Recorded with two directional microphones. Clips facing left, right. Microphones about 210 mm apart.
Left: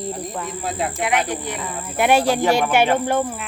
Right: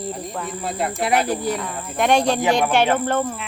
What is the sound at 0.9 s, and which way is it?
Speech, 35° right (ahead or behind).